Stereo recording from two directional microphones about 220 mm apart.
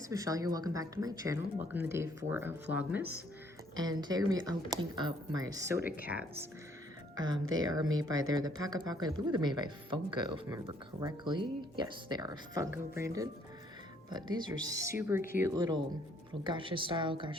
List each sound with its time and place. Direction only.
0.1 s speech: 15° right (ahead or behind)
3.8 s speech: 20° right (ahead or behind)
7.6 s speech: 20° right (ahead or behind)